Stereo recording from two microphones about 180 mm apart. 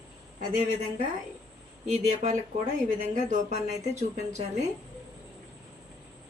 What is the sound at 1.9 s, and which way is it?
Speech, 40° right (ahead or behind).